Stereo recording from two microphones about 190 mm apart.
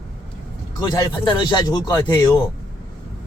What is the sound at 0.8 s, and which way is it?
A man's voice, 20° left (ahead or behind).